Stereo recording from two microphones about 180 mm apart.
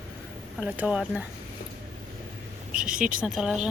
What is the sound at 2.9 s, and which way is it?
Speech, 50° right (ahead or behind).